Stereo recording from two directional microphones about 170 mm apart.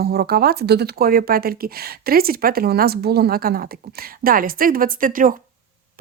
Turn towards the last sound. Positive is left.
turn(degrees=-50)  # may be behind; listen again after turning